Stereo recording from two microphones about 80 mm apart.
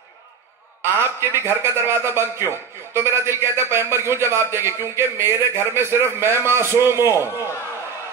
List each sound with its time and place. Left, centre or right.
0.9 s a man's voice: right